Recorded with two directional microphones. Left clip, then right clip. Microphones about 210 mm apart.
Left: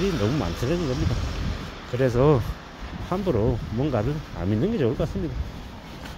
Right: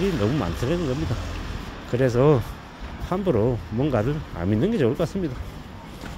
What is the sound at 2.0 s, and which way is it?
Speech, 10° right (ahead or behind).